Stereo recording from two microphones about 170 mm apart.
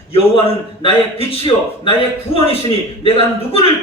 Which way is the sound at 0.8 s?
30° left (ahead or behind).